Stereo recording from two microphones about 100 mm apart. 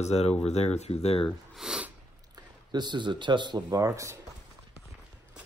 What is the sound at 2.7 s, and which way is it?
Speech, 45° right (ahead or behind).